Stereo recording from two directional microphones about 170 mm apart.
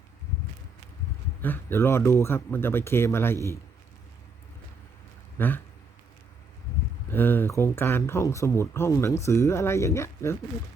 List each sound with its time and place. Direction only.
1.4 s speech: 10° left (ahead or behind)
5.4 s speech: 10° left (ahead or behind)
7.1 s speech: 10° left (ahead or behind)